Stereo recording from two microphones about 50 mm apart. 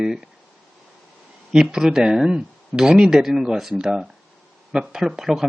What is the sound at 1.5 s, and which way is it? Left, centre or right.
Speech, centre.